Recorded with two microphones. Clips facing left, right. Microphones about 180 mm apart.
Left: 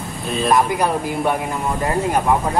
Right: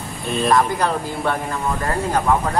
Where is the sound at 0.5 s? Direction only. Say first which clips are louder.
Left 2 dB; 15° left (ahead or behind).